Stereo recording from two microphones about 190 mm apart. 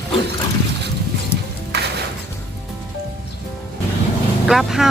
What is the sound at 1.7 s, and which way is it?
Music, 60° right (ahead or behind).